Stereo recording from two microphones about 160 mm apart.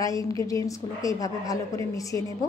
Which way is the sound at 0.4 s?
20° left (ahead or behind).